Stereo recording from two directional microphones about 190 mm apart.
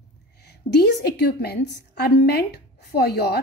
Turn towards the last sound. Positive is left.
turn(degrees=60)  # may be behind; listen again after turning